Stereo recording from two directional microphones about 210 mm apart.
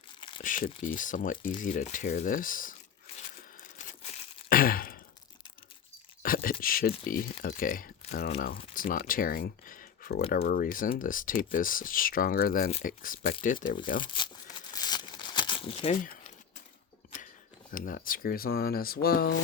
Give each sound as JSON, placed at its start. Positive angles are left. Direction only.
{"t": 0.2, "sound": "crumpling", "side_deg": 25}
{"t": 0.4, "sound": "speech", "side_deg": 40}
{"t": 4.4, "sound": "sigh", "side_deg": 45}
{"t": 6.2, "sound": "a sound", "side_deg": 45}
{"t": 7.1, "sound": "speech", "side_deg": 40}
{"t": 14.0, "sound": "speech", "side_deg": 25}
{"t": 14.7, "sound": "tearing", "side_deg": 20}
{"t": 17.7, "sound": "speech", "side_deg": 40}